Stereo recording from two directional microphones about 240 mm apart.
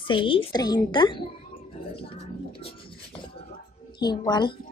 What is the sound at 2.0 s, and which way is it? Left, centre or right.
Music, left.